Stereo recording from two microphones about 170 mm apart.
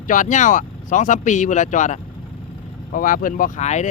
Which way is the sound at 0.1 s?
50° left (ahead or behind).